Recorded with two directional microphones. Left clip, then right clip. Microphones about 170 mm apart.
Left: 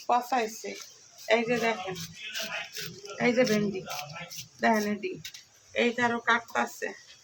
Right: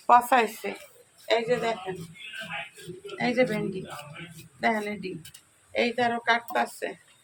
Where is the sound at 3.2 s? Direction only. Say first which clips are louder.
Even; 5° left (ahead or behind).